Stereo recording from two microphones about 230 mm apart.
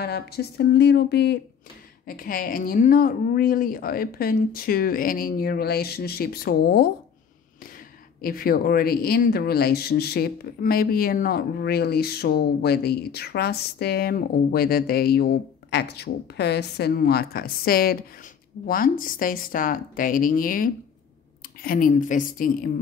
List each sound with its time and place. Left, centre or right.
0.0 s a woman's voice: left
8.2 s a woman's voice: left